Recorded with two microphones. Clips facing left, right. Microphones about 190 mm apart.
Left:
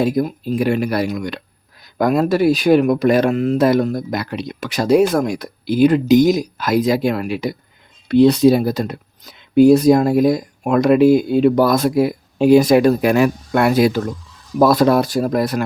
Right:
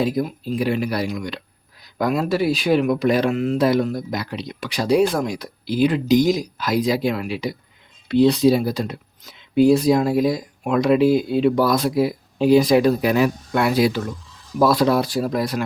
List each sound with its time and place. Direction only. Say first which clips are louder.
0.0 s speech: left 4 dB; 45° left (ahead or behind)